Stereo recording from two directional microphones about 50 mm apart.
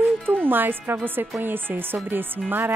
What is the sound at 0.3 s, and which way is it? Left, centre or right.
Speech, right.